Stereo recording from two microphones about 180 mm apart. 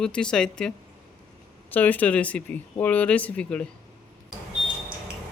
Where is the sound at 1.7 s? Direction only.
10° left (ahead or behind).